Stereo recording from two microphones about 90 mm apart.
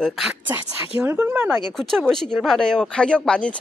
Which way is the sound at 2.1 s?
5° left (ahead or behind).